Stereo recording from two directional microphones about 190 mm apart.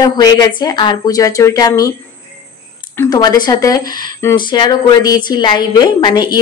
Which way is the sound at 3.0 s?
20° left (ahead or behind).